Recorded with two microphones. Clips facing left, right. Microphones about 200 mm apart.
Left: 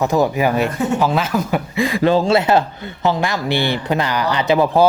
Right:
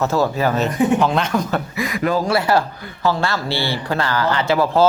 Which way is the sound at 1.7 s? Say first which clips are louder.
Left 6 dB; 30° left (ahead or behind).